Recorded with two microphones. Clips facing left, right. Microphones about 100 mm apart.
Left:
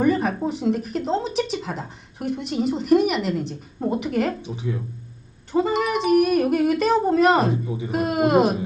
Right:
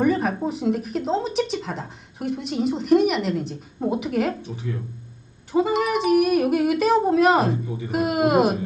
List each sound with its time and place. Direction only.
0.0 s speech: centre (ahead or behind)
4.4 s speech: 15° left (ahead or behind)
5.5 s speech: centre (ahead or behind)
7.5 s speech: 15° left (ahead or behind)
7.9 s speech: 5° right (ahead or behind)